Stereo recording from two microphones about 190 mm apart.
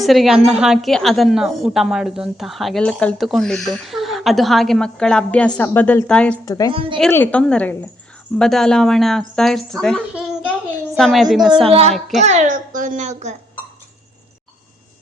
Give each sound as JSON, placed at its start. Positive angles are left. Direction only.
{"t": 0.0, "sound": "a woman's voice", "side_deg": 0}
{"t": 6.4, "sound": "speech", "side_deg": 20}
{"t": 6.7, "sound": "a woman's voice", "side_deg": -25}
{"t": 7.1, "sound": "a woman's voice", "side_deg": 10}
{"t": 11.7, "sound": "a child's voice", "side_deg": -35}
{"t": 11.9, "sound": "a woman's voice", "side_deg": 0}
{"t": 12.2, "sound": "a child's voice", "side_deg": -35}